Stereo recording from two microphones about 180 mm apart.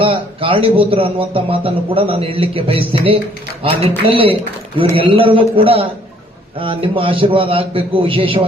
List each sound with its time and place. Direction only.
0.0 s a man's voice: 30° right (ahead or behind)